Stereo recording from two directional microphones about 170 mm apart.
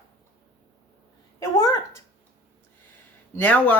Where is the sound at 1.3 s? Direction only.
20° left (ahead or behind).